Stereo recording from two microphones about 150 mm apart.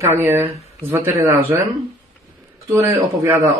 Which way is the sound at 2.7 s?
20° right (ahead or behind).